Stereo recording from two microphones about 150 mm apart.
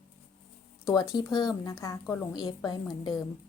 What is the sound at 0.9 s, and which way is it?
Speech, 25° left (ahead or behind).